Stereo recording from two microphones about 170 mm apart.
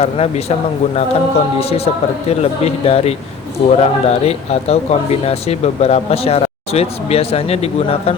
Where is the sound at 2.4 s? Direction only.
40° left (ahead or behind).